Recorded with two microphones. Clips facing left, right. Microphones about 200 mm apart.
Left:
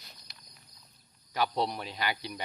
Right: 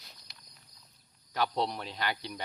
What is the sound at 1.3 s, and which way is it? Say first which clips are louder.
Speech: left 1 dB; 5° left (ahead or behind).